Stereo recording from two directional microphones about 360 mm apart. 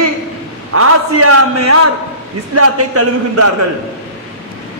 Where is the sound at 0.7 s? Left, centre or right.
Right.